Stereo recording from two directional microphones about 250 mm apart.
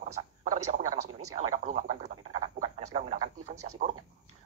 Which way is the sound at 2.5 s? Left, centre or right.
Right.